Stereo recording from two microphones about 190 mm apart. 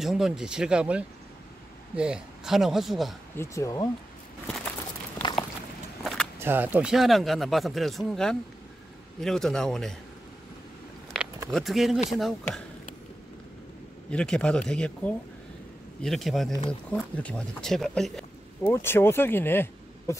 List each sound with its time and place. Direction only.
0.0 s speech: centre (ahead or behind)
3.3 s speech: 15° left (ahead or behind)
6.4 s speech: 10° right (ahead or behind)
11.5 s speech: centre (ahead or behind)
14.1 s speech: 5° left (ahead or behind)
18.7 s speech: 10° left (ahead or behind)